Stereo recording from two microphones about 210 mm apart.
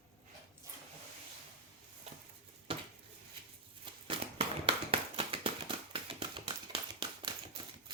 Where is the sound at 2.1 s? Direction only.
30° right (ahead or behind).